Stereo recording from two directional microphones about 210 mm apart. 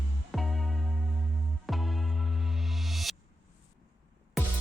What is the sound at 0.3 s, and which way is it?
Music, centre (ahead or behind).